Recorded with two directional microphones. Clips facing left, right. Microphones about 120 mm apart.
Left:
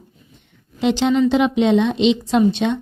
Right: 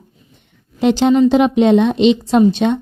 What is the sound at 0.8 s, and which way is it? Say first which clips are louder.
Speech: right 4 dB; 40° right (ahead or behind).